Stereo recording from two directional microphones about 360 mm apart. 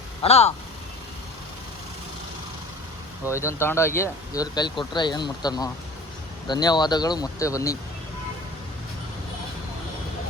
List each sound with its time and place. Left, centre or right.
0.2 s speech: centre
3.2 s speech: centre